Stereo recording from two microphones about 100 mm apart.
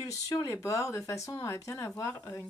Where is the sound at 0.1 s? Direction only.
35° left (ahead or behind).